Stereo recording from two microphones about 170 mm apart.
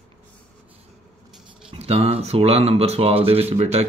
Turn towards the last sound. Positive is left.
turn(degrees=-40)  # may be behind; listen again after turning